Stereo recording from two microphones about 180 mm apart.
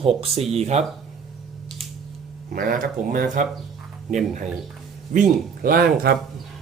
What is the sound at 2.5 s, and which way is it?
Speech, 50° right (ahead or behind).